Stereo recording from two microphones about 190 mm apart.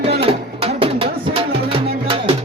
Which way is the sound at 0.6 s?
30° right (ahead or behind).